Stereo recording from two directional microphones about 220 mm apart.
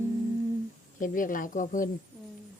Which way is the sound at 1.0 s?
40° left (ahead or behind).